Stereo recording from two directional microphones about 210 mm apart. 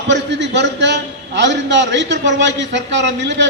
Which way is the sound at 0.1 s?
55° right (ahead or behind).